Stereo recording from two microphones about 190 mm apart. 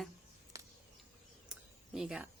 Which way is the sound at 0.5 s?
15° right (ahead or behind).